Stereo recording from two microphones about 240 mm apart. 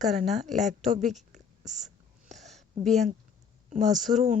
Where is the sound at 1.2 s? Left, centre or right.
Right.